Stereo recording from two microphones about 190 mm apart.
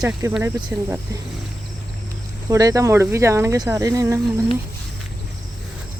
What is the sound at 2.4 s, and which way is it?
Speech, 20° right (ahead or behind).